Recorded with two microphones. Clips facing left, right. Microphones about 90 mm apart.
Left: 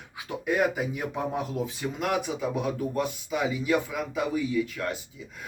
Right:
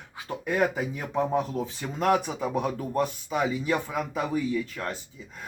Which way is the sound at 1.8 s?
40° right (ahead or behind).